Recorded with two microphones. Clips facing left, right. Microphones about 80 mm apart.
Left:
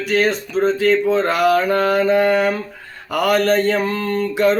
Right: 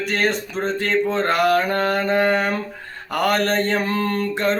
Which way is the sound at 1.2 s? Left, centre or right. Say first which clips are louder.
Left 2 dB; right.